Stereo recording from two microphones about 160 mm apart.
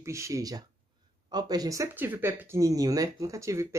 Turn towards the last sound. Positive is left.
turn(degrees=-20)  # may be behind; listen again after turning